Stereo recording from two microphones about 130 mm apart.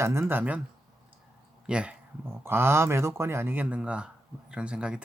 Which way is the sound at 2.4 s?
20° right (ahead or behind).